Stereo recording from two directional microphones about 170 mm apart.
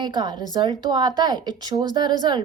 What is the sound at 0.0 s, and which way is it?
A woman's voice, 25° right (ahead or behind).